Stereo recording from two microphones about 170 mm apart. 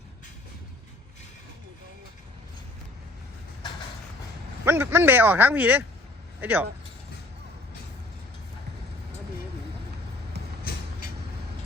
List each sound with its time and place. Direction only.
4.6 s speech: 15° right (ahead or behind)
10.4 s vehicle: 75° right (ahead or behind)